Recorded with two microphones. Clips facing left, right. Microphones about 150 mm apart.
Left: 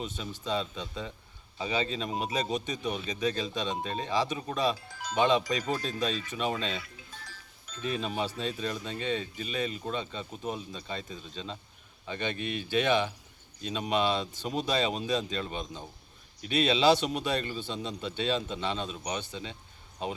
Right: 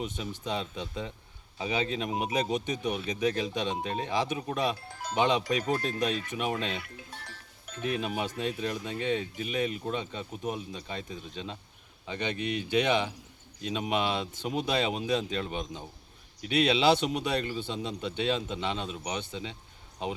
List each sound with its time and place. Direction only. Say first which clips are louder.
0.0 s speech: right 2 dB; 15° right (ahead or behind)
5.5 s speech: right 2 dB; 60° right (ahead or behind)
6.3 s speech: even; 15° right (ahead or behind)
6.8 s music: right 3 dB; 60° right (ahead or behind)
8.0 s speech: right 1 dB; 15° right (ahead or behind)